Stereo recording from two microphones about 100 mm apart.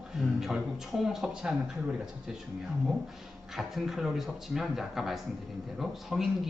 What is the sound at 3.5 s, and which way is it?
Speech, 5° right (ahead or behind).